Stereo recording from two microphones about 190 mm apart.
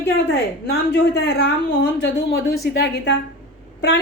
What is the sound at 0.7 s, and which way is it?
Speech, 60° left (ahead or behind).